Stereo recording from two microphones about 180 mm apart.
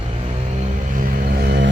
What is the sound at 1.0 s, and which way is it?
Music, 50° right (ahead or behind).